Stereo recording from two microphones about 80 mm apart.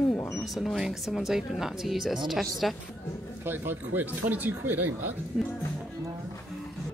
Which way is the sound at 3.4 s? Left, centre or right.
Right.